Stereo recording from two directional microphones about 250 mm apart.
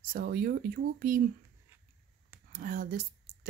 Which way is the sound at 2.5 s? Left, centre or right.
Right.